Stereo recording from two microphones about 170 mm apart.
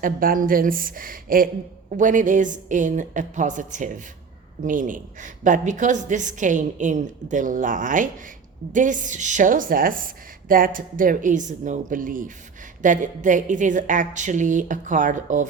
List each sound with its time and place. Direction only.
0.0 s a woman's voice: 55° right (ahead or behind)